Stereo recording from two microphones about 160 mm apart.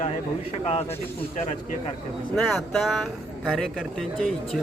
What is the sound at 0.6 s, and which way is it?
Speech, 40° left (ahead or behind).